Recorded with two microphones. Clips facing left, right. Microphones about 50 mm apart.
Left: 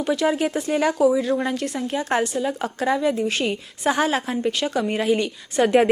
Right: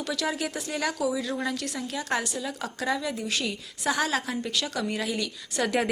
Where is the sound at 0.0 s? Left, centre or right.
Left.